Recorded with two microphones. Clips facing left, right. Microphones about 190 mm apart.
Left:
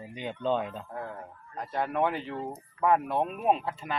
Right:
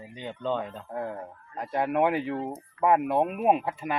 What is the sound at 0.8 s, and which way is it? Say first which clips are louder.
Speech: right 5 dB; 20° right (ahead or behind).